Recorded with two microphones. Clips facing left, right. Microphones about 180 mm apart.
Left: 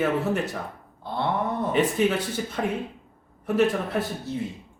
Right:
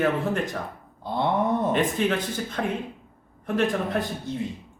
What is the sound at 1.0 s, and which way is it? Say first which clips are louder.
Speech: right 2 dB; 15° right (ahead or behind).